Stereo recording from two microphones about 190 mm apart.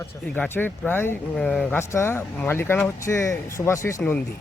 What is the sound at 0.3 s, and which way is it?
Speech, 10° left (ahead or behind).